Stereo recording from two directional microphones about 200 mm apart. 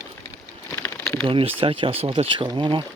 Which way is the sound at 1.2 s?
25° right (ahead or behind).